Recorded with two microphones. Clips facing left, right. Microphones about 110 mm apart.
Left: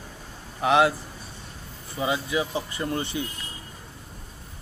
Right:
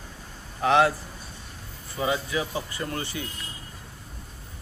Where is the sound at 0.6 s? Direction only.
15° left (ahead or behind).